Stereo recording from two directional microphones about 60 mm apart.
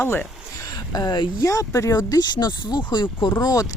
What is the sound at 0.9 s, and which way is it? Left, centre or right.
Speech, left.